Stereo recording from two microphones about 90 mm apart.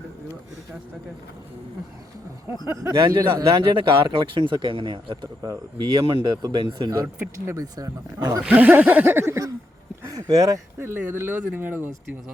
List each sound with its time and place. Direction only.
3.1 s speech: 45° right (ahead or behind)
3.7 s speech: 70° right (ahead or behind)
5.7 s speech: 60° right (ahead or behind)
6.2 s speech: 50° right (ahead or behind)
6.9 s speech: 35° right (ahead or behind)
8.4 s speech: 15° right (ahead or behind)
10.1 s speech: 40° right (ahead or behind)
10.8 s speech: 25° right (ahead or behind)